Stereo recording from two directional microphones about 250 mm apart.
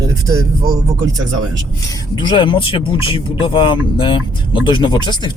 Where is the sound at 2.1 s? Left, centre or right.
Centre.